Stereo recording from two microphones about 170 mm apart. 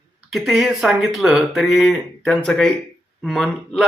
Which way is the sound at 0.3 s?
Centre (ahead or behind).